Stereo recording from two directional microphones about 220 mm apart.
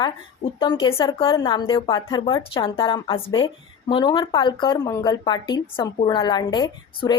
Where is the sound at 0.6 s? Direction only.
20° left (ahead or behind).